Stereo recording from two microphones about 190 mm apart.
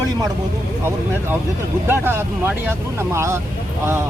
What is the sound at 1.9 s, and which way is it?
Speech, 10° right (ahead or behind).